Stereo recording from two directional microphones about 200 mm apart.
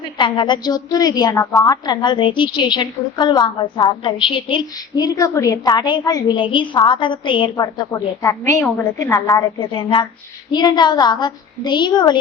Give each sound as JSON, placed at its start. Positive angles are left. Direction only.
{"t": 0.2, "sound": "a woman's voice", "side_deg": 25}